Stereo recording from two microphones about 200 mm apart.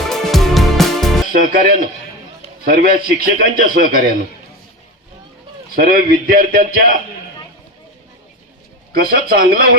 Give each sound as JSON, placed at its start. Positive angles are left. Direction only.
{"t": 0.1, "sound": "music", "side_deg": 0}
{"t": 1.3, "sound": "a man's voice", "side_deg": -50}
{"t": 5.7, "sound": "a man's voice", "side_deg": -45}
{"t": 8.9, "sound": "a man's voice", "side_deg": -50}